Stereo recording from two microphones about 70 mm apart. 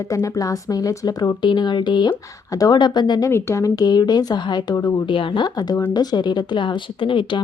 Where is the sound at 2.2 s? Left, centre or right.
Left.